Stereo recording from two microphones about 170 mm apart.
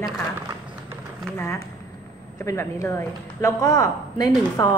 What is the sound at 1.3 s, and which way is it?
A woman's voice, 15° left (ahead or behind).